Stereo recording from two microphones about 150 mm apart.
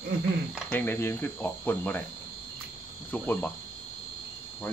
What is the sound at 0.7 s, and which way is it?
Speech, 15° left (ahead or behind).